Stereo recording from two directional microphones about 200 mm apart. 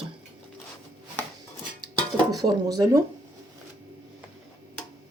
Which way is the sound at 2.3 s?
20° right (ahead or behind).